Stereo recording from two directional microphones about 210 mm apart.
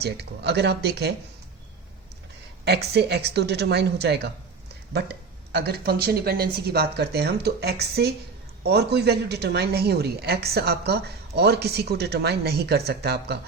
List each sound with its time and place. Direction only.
0.0 s a woman's voice: 50° right (ahead or behind)
2.6 s a woman's voice: 50° right (ahead or behind)
5.5 s a woman's voice: 50° right (ahead or behind)